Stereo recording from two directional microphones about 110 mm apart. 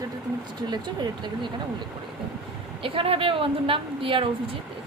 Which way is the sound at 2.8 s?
55° right (ahead or behind).